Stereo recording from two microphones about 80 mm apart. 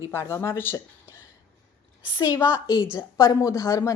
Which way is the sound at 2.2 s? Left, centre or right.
Left.